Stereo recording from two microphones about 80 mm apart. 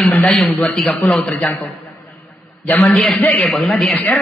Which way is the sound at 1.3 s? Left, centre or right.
Centre.